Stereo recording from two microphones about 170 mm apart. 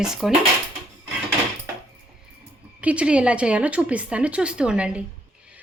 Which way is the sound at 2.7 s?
5° right (ahead or behind).